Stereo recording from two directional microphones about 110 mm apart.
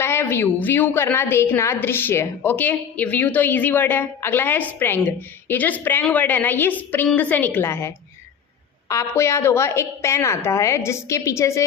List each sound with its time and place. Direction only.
0.0 s a woman's voice: 20° left (ahead or behind)